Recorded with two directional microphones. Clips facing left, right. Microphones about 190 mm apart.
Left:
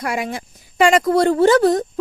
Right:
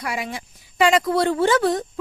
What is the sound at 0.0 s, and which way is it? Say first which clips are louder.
A woman's voice: left 5 dB; 50° left (ahead or behind).